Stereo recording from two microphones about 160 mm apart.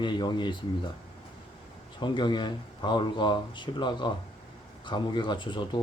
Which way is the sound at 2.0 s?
30° left (ahead or behind).